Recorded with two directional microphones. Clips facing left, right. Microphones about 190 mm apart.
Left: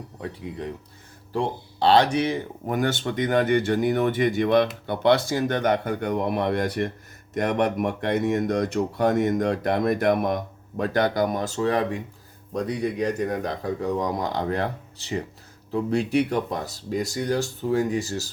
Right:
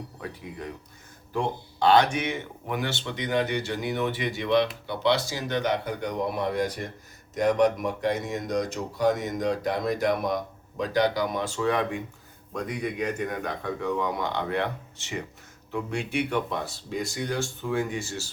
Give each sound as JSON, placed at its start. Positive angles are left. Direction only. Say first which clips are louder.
{"t": 0.2, "sound": "speech", "louder": "left 6 dB", "side_deg": 25}